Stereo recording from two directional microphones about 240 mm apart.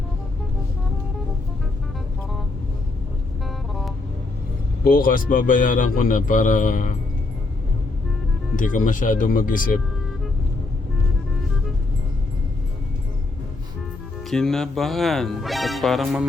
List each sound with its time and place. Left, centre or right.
3.4 s music: centre
4.8 s speech: left
8.5 s speech: left
14.3 s speech: centre